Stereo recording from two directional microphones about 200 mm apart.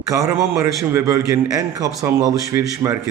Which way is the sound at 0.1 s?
15° right (ahead or behind).